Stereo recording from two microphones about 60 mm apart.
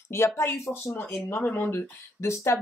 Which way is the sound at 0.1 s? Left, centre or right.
Left.